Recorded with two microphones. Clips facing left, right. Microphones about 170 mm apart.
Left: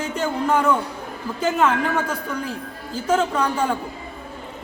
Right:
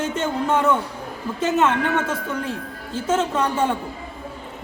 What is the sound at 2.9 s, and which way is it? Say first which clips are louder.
Speech: left 1 dB; 5° right (ahead or behind).